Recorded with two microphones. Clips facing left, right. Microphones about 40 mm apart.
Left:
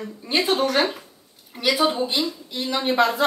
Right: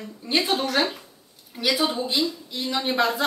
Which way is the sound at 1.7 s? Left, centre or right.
Left.